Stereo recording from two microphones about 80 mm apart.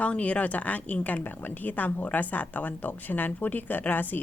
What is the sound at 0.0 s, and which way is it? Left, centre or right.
A woman's voice, centre.